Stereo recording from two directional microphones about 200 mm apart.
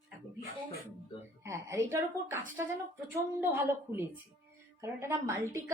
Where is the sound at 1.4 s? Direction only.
15° right (ahead or behind).